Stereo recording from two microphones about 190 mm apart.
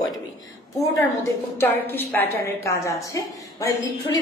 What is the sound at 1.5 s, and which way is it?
A woman's voice, 10° left (ahead or behind).